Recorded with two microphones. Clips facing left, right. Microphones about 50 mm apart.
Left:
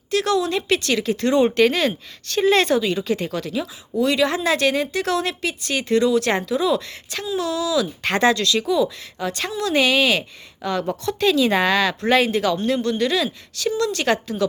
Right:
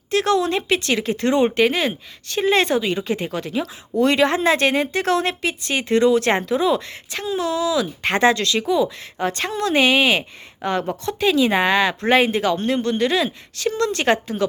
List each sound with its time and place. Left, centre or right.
0.1 s a woman's voice: right
3.9 s a woman's voice: right
11.2 s a woman's voice: centre